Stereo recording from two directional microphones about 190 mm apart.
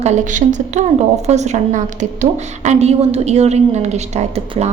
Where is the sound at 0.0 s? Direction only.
40° right (ahead or behind).